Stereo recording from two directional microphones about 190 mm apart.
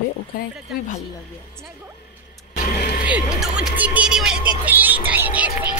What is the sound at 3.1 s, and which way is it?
Speech, 5° right (ahead or behind).